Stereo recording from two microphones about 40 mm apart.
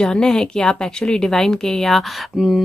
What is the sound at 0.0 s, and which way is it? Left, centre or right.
Speech, centre.